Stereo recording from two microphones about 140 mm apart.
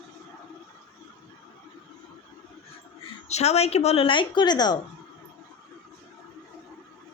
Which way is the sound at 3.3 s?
50° left (ahead or behind).